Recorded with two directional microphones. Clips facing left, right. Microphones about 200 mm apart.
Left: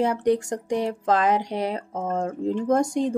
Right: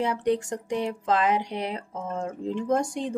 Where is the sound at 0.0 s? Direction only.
40° left (ahead or behind).